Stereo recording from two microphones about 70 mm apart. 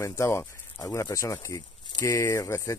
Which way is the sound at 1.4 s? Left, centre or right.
Left.